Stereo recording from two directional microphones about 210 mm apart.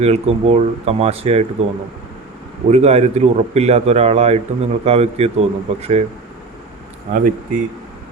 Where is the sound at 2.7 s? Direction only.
30° right (ahead or behind).